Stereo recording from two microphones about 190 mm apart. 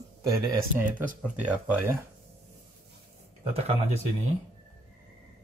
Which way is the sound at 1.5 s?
10° right (ahead or behind).